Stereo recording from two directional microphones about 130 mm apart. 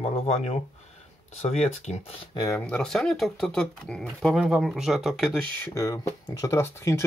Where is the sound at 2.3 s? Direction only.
30° left (ahead or behind).